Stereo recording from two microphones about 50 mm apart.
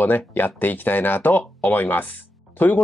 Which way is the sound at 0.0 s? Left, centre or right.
Left.